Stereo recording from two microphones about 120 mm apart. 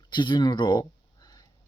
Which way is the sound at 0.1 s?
40° left (ahead or behind).